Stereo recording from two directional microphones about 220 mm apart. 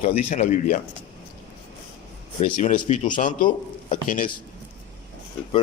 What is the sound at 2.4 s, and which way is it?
A man's voice, 35° left (ahead or behind).